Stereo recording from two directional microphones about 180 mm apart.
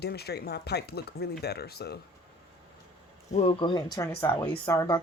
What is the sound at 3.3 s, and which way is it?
Speech, 35° left (ahead or behind).